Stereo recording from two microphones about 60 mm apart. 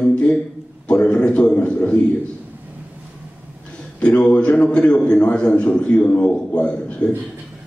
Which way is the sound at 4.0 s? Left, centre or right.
Centre.